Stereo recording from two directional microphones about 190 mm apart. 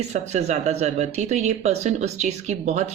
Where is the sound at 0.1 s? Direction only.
35° right (ahead or behind).